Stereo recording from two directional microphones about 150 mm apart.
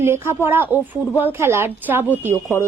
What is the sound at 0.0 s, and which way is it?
Speech, 15° right (ahead or behind).